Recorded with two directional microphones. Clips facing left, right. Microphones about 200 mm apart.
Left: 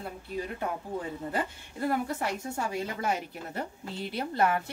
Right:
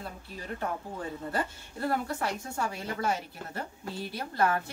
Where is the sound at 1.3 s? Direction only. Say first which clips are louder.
Even; 15° left (ahead or behind).